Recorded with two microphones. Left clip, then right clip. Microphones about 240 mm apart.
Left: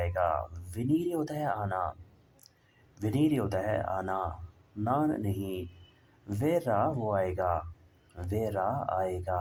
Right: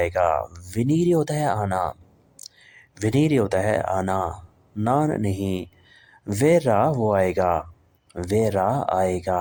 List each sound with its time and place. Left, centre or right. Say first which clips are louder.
0.0 s speech: right 9 dB; right